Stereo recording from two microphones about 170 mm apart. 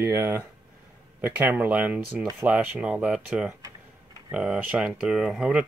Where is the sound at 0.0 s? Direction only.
15° right (ahead or behind).